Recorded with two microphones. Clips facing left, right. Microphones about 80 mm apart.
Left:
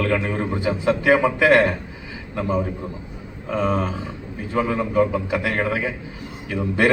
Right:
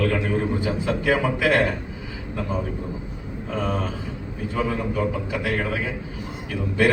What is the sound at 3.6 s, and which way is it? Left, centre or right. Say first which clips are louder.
A man's voice: left 5 dB; left.